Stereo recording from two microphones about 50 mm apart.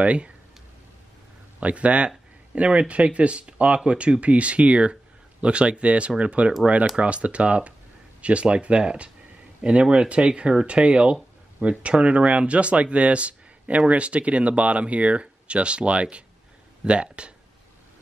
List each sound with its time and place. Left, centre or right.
0.0 s speech: right
1.6 s speech: right